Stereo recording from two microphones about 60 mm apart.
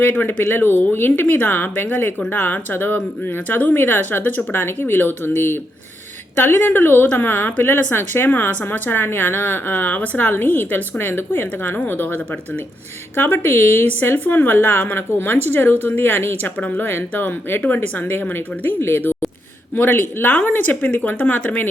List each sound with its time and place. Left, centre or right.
0.0 s speech: left